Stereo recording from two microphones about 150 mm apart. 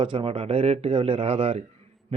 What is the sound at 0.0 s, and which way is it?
Speech, 35° right (ahead or behind).